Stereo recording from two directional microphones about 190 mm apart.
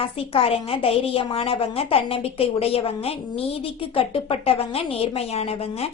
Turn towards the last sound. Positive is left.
turn(degrees=30)  # may be behind; listen again after turning